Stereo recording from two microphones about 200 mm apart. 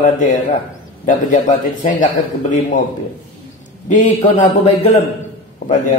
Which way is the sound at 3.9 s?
40° left (ahead or behind).